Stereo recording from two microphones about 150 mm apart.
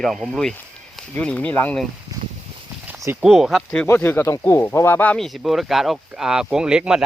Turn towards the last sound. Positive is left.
turn(degrees=-5)  # may be behind; listen again after turning